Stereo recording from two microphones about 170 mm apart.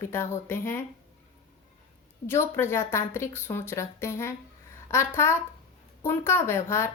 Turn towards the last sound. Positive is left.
turn(degrees=15)  # may be behind; listen again after turning